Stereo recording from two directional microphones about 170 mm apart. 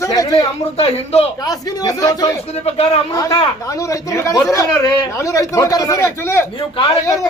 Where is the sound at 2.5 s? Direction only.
35° left (ahead or behind).